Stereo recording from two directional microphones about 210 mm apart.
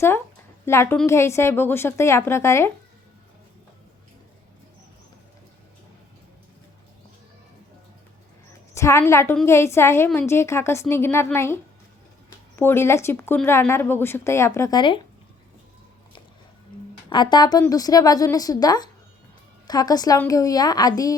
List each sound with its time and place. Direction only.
0.6 s a woman's voice: 10° left (ahead or behind)
8.7 s speech: 15° left (ahead or behind)
17.1 s speech: 20° left (ahead or behind)